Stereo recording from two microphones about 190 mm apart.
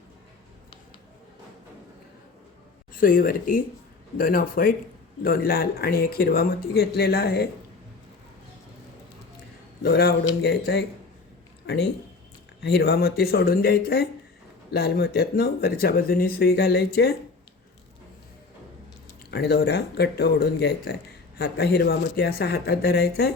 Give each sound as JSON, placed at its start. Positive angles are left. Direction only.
{"t": 2.9, "sound": "speech", "side_deg": 45}
{"t": 9.8, "sound": "speech", "side_deg": 55}
{"t": 19.3, "sound": "speech", "side_deg": 60}